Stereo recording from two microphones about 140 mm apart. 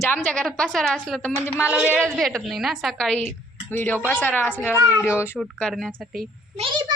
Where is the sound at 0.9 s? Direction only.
10° right (ahead or behind).